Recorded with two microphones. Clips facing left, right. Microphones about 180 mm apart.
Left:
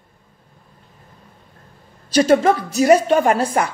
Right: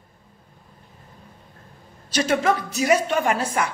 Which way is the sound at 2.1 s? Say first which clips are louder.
Left 7 dB; 35° left (ahead or behind).